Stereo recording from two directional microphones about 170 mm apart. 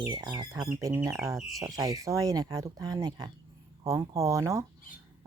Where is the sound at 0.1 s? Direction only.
25° right (ahead or behind).